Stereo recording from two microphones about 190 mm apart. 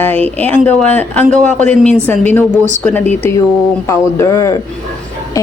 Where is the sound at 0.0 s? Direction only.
10° left (ahead or behind).